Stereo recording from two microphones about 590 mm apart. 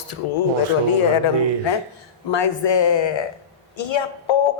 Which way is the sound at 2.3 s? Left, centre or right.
Left.